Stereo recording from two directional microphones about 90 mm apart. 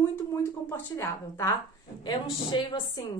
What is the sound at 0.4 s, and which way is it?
Speech, 35° left (ahead or behind).